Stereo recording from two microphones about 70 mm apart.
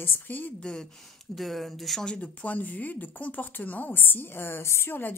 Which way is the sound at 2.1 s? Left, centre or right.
Left.